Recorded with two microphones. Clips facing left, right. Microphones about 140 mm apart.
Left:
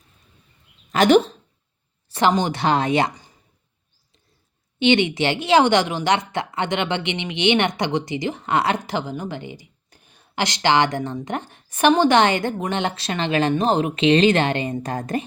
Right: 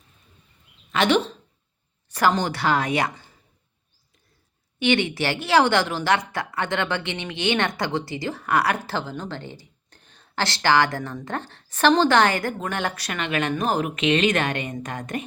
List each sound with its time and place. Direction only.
0.9 s speech: 40° left (ahead or behind)
2.1 s a woman's voice: 20° left (ahead or behind)
4.8 s a woman's voice: 20° left (ahead or behind)